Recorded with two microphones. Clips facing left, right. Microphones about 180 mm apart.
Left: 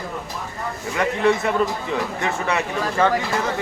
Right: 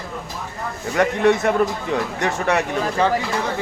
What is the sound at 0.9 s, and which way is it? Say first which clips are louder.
Speech: right 3 dB; 45° right (ahead or behind).